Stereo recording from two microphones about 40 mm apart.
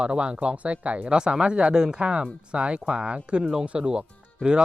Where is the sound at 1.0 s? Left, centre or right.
Right.